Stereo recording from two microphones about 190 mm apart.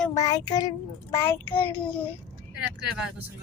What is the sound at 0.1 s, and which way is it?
A child's voice, 20° left (ahead or behind).